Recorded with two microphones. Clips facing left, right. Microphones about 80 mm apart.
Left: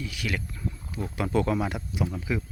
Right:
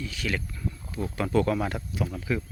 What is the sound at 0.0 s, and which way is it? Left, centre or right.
Speech, centre.